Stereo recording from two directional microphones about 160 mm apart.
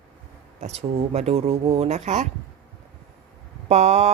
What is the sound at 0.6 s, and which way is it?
Speech, 40° right (ahead or behind).